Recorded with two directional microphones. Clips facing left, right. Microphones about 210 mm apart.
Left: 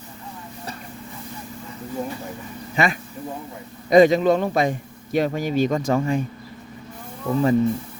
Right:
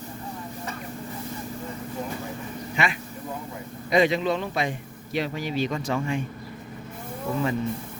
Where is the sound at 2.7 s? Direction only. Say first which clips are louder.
Left 6 dB; 40° left (ahead or behind).